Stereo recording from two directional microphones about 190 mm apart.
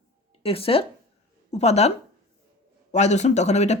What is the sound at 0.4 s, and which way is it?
Speech, 30° left (ahead or behind).